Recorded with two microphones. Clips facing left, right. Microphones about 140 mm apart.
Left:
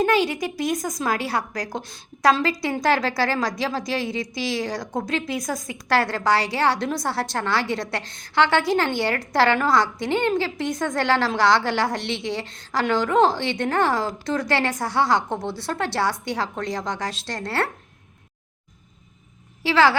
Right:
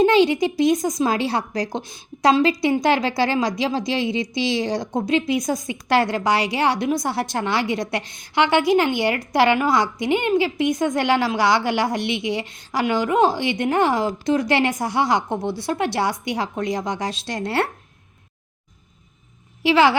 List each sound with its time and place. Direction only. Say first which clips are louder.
0.0 s a woman's voice: right 5 dB; 25° right (ahead or behind)
19.6 s a woman's voice: right 2 dB; 20° right (ahead or behind)